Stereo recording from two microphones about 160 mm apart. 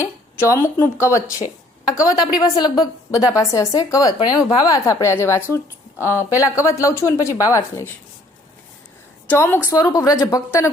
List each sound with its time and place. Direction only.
0.0 s a woman's voice: 20° left (ahead or behind)
9.3 s a woman's voice: 15° left (ahead or behind)